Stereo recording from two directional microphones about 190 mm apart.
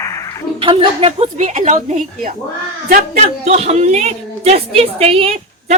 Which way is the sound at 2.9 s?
40° right (ahead or behind).